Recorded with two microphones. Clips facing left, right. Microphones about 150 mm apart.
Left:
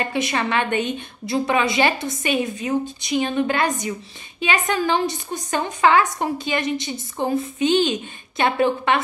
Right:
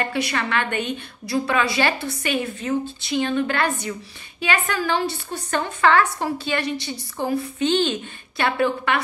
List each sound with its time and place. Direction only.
0.0 s a woman's voice: 20° left (ahead or behind)